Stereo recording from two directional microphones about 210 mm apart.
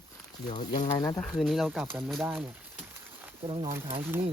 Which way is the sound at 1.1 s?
Centre (ahead or behind).